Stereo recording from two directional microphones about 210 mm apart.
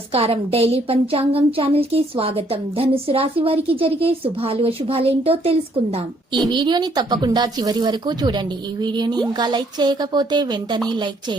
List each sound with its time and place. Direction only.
0.1 s a woman's voice: 25° right (ahead or behind)